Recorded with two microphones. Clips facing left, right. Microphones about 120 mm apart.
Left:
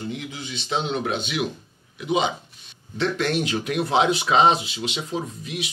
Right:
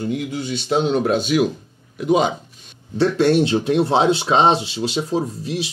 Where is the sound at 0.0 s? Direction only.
45° right (ahead or behind).